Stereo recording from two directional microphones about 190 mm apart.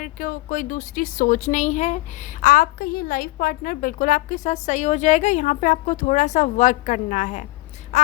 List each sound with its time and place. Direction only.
0.0 s a woman's voice: 45° left (ahead or behind)
7.9 s quack: 35° left (ahead or behind)